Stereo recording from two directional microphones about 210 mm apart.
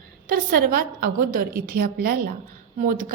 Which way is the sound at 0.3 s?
45° right (ahead or behind).